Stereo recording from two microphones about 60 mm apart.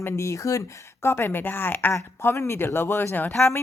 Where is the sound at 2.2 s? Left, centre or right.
Left.